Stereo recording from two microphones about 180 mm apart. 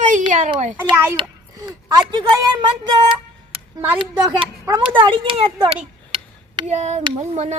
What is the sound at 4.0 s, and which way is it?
A woman's voice, 25° right (ahead or behind).